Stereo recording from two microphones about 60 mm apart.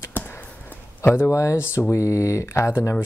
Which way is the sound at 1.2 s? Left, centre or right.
Left.